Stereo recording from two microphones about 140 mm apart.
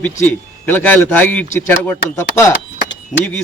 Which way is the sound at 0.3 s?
10° left (ahead or behind).